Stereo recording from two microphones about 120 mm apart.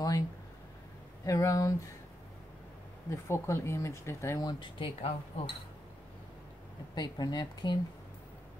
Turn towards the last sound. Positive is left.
turn(degrees=35)  # may be behind; listen again after turning